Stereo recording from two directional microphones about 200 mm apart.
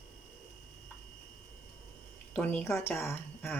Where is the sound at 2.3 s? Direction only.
10° left (ahead or behind).